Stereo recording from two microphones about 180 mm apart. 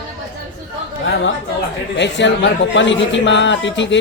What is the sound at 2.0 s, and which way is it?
A man's voice, 80° left.